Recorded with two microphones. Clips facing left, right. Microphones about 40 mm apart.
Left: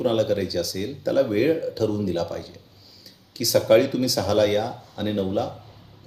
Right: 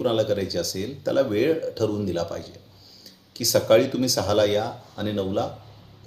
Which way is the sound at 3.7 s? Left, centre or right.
Centre.